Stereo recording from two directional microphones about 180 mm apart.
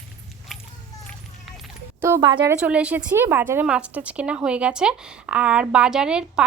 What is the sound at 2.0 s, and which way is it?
A woman's voice, 15° right (ahead or behind).